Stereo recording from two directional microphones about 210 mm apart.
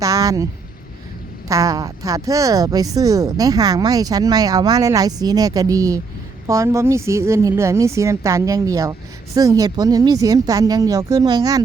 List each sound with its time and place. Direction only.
0.0 s vehicle: 15° right (ahead or behind)
1.5 s a woman's voice: 15° right (ahead or behind)